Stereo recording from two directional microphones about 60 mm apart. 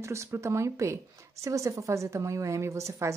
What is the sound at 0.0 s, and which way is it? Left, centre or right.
A woman's voice, right.